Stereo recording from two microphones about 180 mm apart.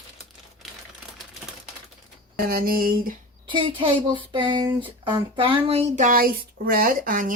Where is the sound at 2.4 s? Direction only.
55° right (ahead or behind).